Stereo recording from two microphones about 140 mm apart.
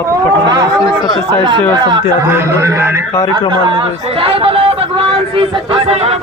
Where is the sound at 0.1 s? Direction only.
30° right (ahead or behind).